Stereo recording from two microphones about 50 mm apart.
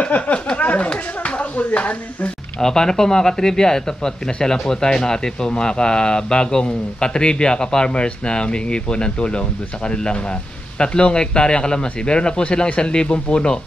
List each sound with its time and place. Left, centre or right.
0.0 s speech: left
0.6 s a sound: left
2.6 s a man's voice: centre